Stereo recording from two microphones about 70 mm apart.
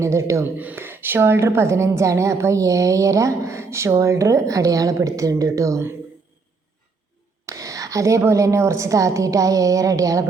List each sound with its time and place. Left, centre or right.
0.0 s a woman's voice: right
0.4 s a woman's voice: right
7.4 s a woman's voice: right